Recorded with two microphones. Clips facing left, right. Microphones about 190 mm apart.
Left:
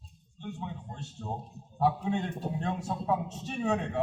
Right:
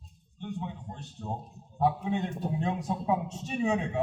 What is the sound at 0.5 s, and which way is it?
Speech, 15° right (ahead or behind).